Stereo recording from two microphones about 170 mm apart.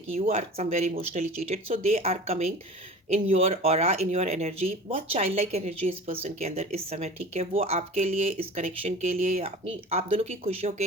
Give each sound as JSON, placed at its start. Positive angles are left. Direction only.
{"t": 0.1, "sound": "speech", "side_deg": -40}